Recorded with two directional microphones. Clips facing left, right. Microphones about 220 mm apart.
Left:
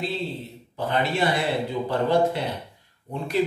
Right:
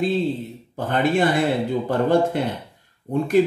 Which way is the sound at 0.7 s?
50° right (ahead or behind).